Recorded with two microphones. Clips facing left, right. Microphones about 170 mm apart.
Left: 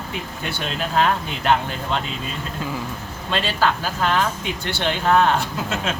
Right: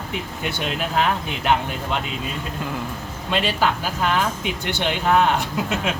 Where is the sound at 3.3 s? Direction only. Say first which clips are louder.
Even; 15° right (ahead or behind).